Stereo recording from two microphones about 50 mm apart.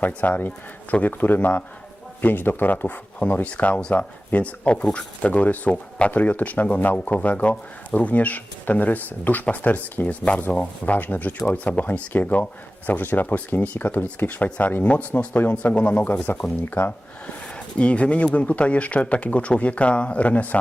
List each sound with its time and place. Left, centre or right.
0.0 s speech: left
17.7 s speech: left